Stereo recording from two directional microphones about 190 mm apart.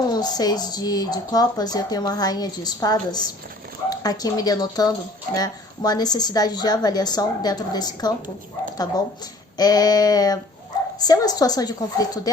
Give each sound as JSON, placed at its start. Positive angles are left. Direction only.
{"t": 0.1, "sound": "speech", "side_deg": 20}
{"t": 9.6, "sound": "speech", "side_deg": 20}